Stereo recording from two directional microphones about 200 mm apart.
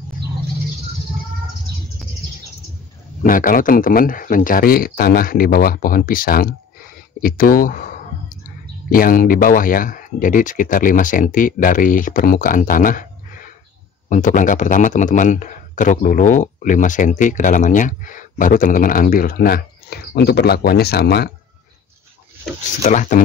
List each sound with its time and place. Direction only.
3.2 s speech: 45° left (ahead or behind)
8.9 s speech: 45° left (ahead or behind)
22.8 s speech: 40° left (ahead or behind)